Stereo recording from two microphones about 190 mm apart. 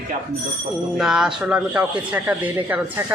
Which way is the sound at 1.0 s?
5° right (ahead or behind).